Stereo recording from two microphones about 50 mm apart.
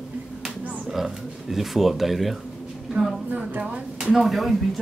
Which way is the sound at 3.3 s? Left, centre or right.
Right.